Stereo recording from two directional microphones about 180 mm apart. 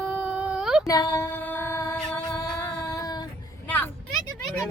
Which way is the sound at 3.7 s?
10° left (ahead or behind).